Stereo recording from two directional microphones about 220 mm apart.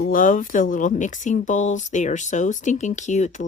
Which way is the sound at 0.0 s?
40° left (ahead or behind).